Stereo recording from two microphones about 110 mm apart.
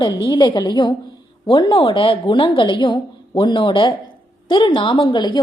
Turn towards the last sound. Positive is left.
turn(degrees=45)  # may be behind; listen again after turning